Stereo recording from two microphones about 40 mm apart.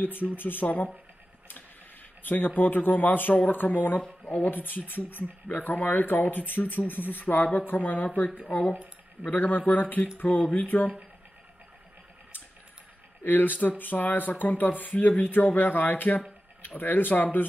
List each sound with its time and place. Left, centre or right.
0.3 s speech: left
2.2 s speech: left
8.4 s speech: left
9.2 s speech: left
13.2 s speech: left